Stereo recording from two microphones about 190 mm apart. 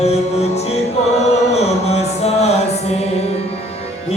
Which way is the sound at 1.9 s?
35° left (ahead or behind).